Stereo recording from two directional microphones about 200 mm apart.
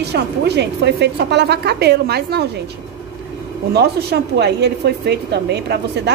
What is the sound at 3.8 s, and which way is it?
A woman's voice, 55° right (ahead or behind).